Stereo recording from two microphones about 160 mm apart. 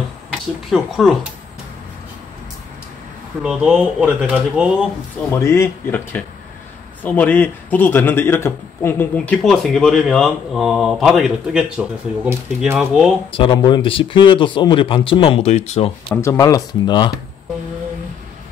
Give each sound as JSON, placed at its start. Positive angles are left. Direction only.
{"t": 0.3, "sound": "a man's voice", "side_deg": 0}
{"t": 3.4, "sound": "speech", "side_deg": -5}
{"t": 5.3, "sound": "a man's voice", "side_deg": 15}
{"t": 13.3, "sound": "speech", "side_deg": 30}
{"t": 16.2, "sound": "speech", "side_deg": 20}